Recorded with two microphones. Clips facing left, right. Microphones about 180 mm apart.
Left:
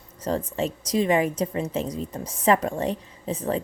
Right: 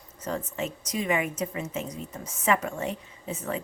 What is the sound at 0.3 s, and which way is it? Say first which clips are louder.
A woman's voice: left 5 dB; 35° left (ahead or behind).